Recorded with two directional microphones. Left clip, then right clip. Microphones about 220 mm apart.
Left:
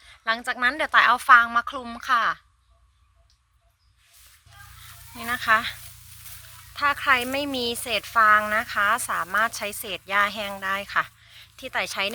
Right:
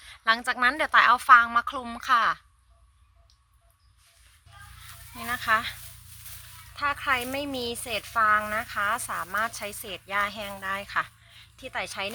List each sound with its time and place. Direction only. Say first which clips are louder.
0.0 s a woman's voice: right 2 dB; 5° right (ahead or behind)
4.8 s speech: left 2 dB; 20° left (ahead or behind)